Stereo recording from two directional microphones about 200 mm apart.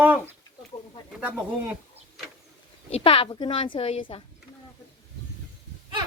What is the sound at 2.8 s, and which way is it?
A woman's voice, 30° left (ahead or behind).